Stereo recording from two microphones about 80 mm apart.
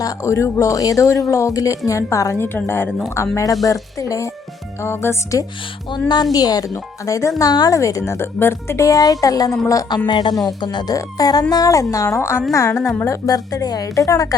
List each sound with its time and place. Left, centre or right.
0.0 s speech: left
3.3 s speech: left
4.8 s speech: left
5.9 s speech: left
6.3 s speech: left
7.8 s speech: left
10.1 s speech: left